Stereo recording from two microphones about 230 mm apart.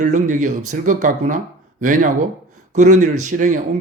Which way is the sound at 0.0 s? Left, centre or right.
Right.